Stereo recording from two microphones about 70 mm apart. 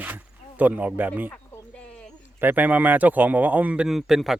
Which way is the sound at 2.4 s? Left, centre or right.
Right.